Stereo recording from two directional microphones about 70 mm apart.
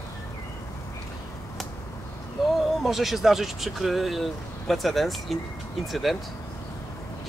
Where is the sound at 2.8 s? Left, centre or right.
Centre.